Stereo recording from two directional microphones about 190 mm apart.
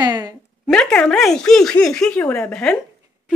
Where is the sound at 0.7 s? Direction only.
5° left (ahead or behind).